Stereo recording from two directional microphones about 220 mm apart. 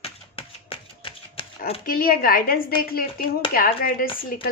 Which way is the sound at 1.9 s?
40° left (ahead or behind).